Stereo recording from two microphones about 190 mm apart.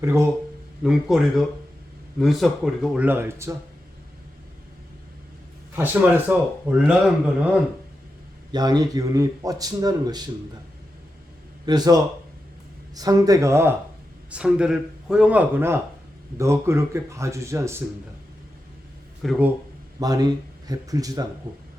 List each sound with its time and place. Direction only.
0.0 s speech: 15° right (ahead or behind)
0.8 s speech: centre (ahead or behind)
5.7 s speech: 10° right (ahead or behind)
8.5 s speech: 20° right (ahead or behind)
11.6 s speech: 20° right (ahead or behind)
19.2 s speech: centre (ahead or behind)
20.0 s speech: 20° right (ahead or behind)